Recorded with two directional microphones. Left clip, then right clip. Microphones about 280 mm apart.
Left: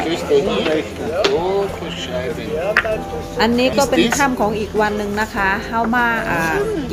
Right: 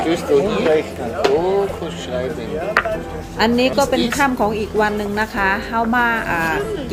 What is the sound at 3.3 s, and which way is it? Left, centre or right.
A woman's voice, centre.